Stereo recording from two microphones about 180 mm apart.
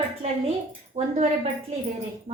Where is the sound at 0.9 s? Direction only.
35° right (ahead or behind).